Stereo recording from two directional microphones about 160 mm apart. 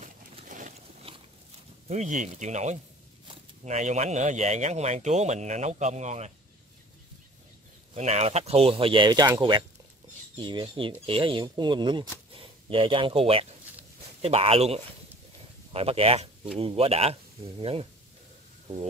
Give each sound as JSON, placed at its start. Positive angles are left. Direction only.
{"t": 0.0, "sound": "vehicle", "side_deg": -55}
{"t": 1.1, "sound": "dog", "side_deg": -35}
{"t": 1.9, "sound": "speech", "side_deg": -45}
{"t": 7.9, "sound": "speech", "side_deg": -45}